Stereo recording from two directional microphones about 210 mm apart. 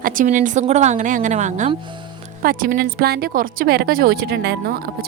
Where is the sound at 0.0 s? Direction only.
40° right (ahead or behind).